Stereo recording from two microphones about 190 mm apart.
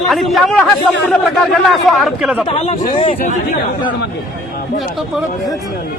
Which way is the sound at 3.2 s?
45° left (ahead or behind).